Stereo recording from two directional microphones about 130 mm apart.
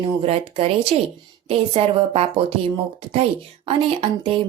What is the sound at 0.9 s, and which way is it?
A woman's voice, 50° right (ahead or behind).